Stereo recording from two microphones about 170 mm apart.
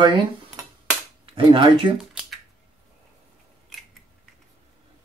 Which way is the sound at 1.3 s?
30° right (ahead or behind).